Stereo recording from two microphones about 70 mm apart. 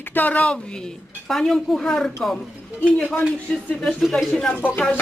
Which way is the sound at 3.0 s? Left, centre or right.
Left.